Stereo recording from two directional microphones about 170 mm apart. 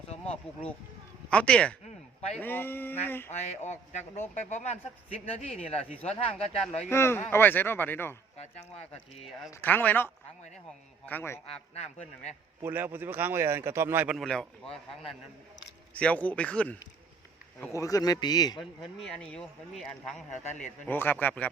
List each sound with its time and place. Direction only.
0.3 s speech: 5° left (ahead or behind)
3.3 s speech: 40° left (ahead or behind)
6.9 s speech: 15° left (ahead or behind)
9.6 s speech: 10° left (ahead or behind)
11.7 s speech: 40° left (ahead or behind)
12.6 s speech: 10° right (ahead or behind)
14.2 s speech: 5° left (ahead or behind)
16.0 s a man's voice: 10° left (ahead or behind); by 18.6 s 25° left (ahead or behind)
18.6 s speech: centre (ahead or behind)